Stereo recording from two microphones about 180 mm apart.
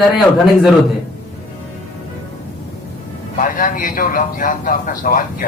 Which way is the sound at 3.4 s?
50° left (ahead or behind).